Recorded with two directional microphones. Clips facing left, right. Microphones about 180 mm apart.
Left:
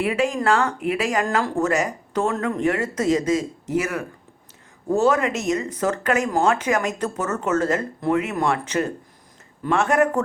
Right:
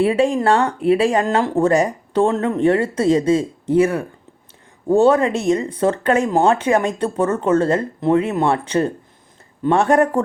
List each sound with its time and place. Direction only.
0.0 s speech: 30° right (ahead or behind)